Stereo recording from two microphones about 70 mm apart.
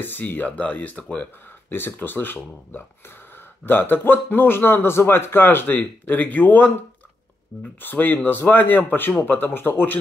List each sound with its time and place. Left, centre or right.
0.0 s a man's voice: left